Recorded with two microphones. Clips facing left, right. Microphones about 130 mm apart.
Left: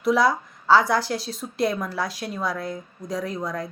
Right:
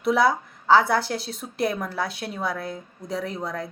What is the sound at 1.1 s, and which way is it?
Speech, 60° right (ahead or behind).